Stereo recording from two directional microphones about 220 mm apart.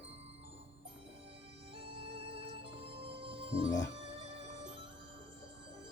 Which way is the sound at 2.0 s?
25° right (ahead or behind).